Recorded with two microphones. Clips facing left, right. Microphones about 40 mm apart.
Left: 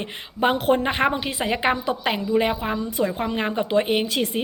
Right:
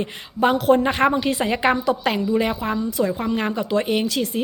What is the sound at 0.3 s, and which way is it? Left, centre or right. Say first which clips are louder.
A woman's voice: right 3 dB; centre.